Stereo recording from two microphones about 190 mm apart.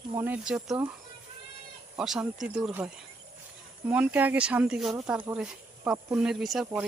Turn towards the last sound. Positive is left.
turn(degrees=0)  # may be behind; listen again after turning